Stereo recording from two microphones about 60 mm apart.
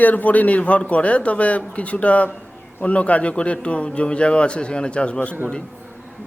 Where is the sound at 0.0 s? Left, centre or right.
Left.